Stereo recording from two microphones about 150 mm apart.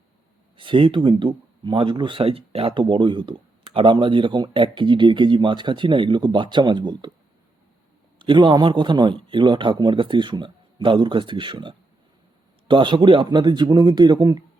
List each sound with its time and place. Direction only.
0.5 s speech: 35° right (ahead or behind)
8.2 s speech: 35° right (ahead or behind)